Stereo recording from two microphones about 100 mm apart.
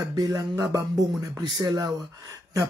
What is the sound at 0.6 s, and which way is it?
Speech, 35° right (ahead or behind).